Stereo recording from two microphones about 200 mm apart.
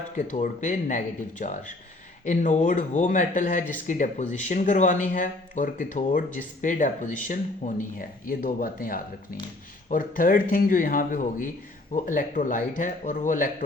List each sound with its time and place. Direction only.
0.2 s speech: 40° left (ahead or behind)